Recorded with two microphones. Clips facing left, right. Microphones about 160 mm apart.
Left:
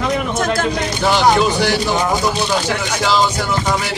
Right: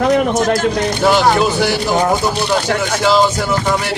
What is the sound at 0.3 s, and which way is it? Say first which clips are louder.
Speech: right 4 dB; 55° left (ahead or behind).